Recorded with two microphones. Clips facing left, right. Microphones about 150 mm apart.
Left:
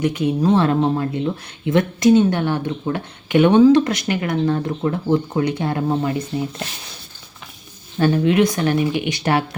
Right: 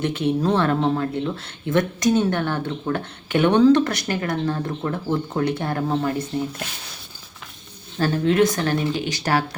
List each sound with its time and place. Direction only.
0.0 s speech: 15° left (ahead or behind)
7.9 s speech: 20° left (ahead or behind)